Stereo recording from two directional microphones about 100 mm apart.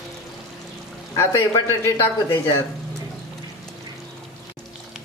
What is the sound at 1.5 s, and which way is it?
Speech, 35° left (ahead or behind).